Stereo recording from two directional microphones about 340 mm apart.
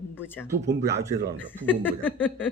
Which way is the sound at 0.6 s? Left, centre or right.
Right.